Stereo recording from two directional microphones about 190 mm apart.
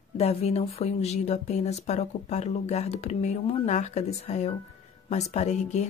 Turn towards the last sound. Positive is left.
turn(degrees=35)  # may be behind; listen again after turning